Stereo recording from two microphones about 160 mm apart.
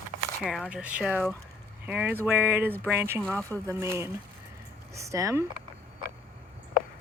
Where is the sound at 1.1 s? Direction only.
10° left (ahead or behind).